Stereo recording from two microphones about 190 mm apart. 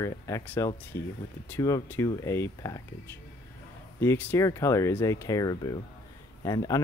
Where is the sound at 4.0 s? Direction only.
10° left (ahead or behind).